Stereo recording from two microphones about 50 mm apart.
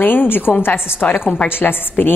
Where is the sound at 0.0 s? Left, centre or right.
Left.